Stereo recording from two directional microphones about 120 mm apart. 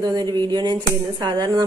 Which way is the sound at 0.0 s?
35° right (ahead or behind).